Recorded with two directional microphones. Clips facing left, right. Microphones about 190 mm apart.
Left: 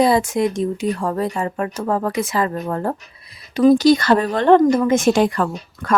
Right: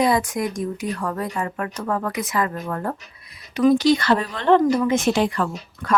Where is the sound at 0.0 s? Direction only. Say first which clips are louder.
Left 4 dB; 30° left (ahead or behind).